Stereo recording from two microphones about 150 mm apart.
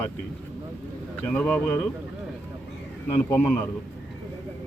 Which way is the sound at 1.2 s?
10° left (ahead or behind).